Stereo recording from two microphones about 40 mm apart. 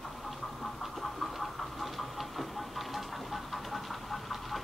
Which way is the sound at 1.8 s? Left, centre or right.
Centre.